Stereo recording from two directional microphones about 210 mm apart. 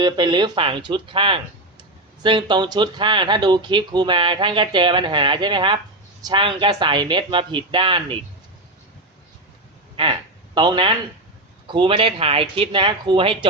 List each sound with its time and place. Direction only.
0.0 s speech: 20° right (ahead or behind)
9.9 s speech: 25° right (ahead or behind)